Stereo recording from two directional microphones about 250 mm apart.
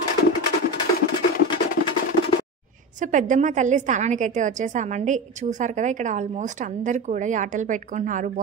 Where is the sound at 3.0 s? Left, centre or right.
Right.